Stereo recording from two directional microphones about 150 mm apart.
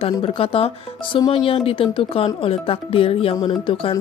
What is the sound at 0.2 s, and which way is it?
Speech, 35° left (ahead or behind).